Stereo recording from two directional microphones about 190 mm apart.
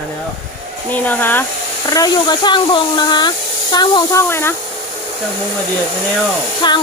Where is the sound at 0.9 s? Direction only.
10° left (ahead or behind).